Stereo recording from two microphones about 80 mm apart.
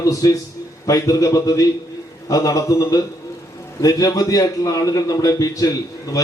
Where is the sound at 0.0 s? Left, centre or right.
Left.